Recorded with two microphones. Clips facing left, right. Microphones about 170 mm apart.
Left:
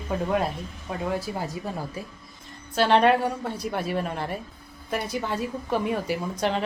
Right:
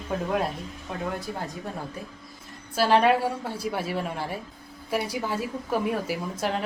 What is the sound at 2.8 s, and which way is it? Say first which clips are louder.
A woman's voice: left 1 dB; 5° right (ahead or behind).